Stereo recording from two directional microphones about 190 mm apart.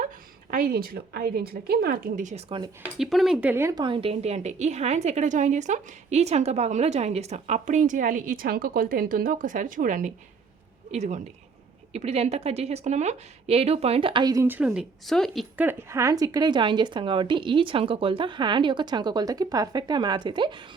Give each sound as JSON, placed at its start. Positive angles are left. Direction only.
{"t": 0.5, "sound": "a woman's voice", "side_deg": -50}
{"t": 3.0, "sound": "speech", "side_deg": 0}
{"t": 3.5, "sound": "a woman's voice", "side_deg": -15}
{"t": 15.6, "sound": "speech", "side_deg": -15}